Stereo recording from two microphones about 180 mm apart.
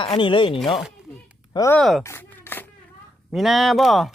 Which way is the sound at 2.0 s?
15° left (ahead or behind).